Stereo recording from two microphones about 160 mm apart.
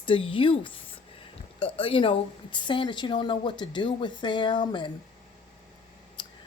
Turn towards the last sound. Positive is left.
turn(degrees=30)  # may be behind; listen again after turning